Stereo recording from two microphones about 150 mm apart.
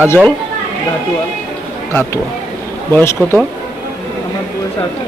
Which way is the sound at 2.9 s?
15° left (ahead or behind).